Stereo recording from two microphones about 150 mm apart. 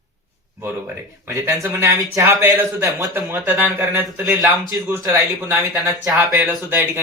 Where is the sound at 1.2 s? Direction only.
15° right (ahead or behind).